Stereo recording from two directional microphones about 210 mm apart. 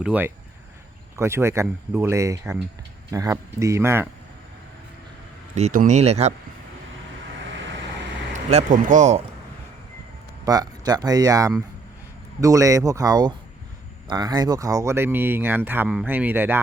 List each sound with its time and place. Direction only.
0.0 s speech: 5° right (ahead or behind)
5.5 s speech: 35° right (ahead or behind)
8.3 s a man's voice: 35° right (ahead or behind)
10.4 s speech: 20° right (ahead or behind)